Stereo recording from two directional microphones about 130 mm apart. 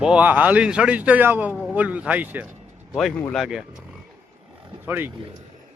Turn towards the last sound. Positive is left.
turn(degrees=-15)  # may be behind; listen again after turning